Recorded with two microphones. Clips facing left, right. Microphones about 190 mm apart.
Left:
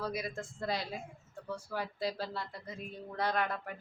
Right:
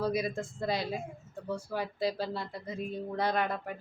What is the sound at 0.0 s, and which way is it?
Speech, 25° right (ahead or behind).